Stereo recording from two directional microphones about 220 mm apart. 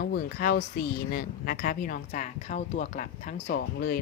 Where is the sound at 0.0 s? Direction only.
40° left (ahead or behind).